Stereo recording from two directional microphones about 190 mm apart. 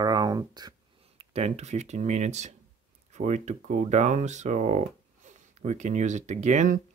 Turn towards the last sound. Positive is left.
turn(degrees=-40)  # may be behind; listen again after turning